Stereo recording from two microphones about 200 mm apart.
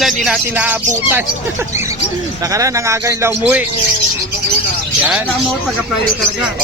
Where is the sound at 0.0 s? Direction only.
5° right (ahead or behind).